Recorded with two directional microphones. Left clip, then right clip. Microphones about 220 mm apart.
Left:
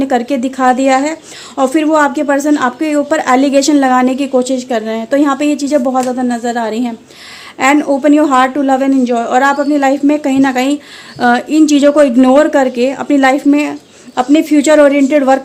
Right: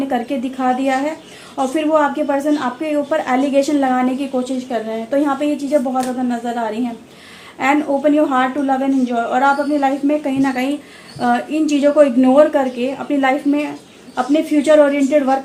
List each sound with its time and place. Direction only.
0.0 s a woman's voice: 50° left (ahead or behind)